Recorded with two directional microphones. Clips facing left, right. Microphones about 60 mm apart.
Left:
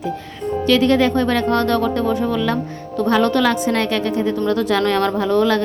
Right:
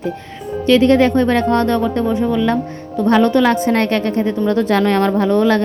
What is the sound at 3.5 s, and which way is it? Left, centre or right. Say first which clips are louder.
Speech: right 3 dB; right.